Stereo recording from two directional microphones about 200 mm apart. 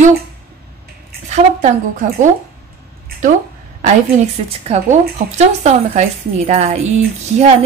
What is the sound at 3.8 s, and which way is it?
A woman's voice, 35° right (ahead or behind).